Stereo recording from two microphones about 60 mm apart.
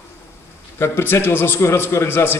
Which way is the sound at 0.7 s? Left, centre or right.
Left.